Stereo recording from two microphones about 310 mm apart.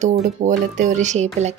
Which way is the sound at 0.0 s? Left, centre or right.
Right.